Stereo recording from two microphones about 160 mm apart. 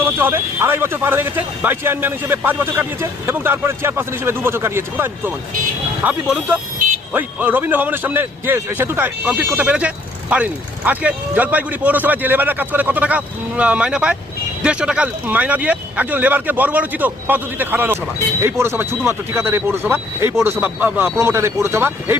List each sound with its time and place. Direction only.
0.0 s a man's voice: 15° right (ahead or behind)